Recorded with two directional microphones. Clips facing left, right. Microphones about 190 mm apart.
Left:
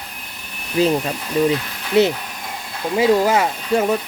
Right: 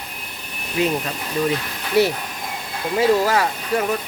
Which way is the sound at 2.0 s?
20° left (ahead or behind).